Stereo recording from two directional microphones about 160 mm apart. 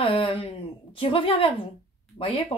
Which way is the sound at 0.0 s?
30° left (ahead or behind).